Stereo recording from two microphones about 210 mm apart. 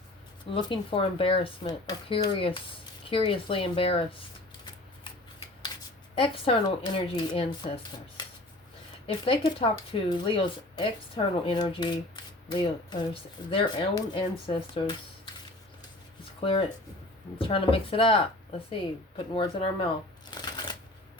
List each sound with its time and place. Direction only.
0.5 s speech: 25° left (ahead or behind)
6.1 s speech: 25° left (ahead or behind)
9.0 s speech: 25° left (ahead or behind)
16.4 s speech: 25° left (ahead or behind)
20.4 s shuffling cards: 20° left (ahead or behind)